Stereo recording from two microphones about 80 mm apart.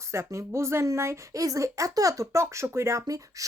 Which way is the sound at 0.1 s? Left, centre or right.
Right.